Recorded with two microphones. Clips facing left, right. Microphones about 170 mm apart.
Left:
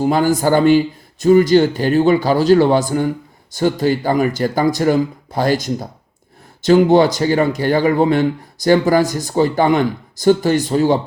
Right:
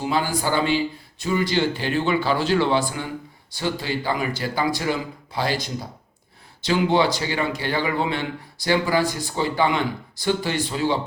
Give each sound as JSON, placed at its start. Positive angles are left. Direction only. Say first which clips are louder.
{"t": 0.0, "sound": "speech", "louder": "left 9 dB", "side_deg": 45}